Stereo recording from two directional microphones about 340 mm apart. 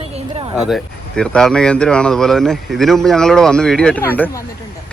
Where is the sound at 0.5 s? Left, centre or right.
Centre.